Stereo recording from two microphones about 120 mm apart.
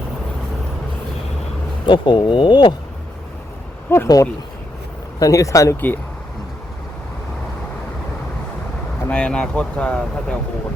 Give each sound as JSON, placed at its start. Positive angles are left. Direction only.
{"t": 1.9, "sound": "speech", "side_deg": 40}
{"t": 3.8, "sound": "speech", "side_deg": 20}
{"t": 9.0, "sound": "speech", "side_deg": 10}